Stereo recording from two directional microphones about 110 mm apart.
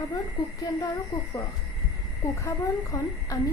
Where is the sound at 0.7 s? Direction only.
35° left (ahead or behind).